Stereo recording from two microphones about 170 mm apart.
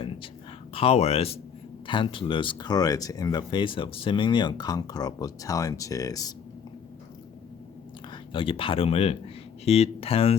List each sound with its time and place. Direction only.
0.7 s speech: 35° left (ahead or behind)
8.1 s speech: 30° left (ahead or behind)